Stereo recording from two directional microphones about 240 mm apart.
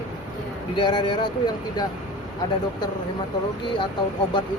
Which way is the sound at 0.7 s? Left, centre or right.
Centre.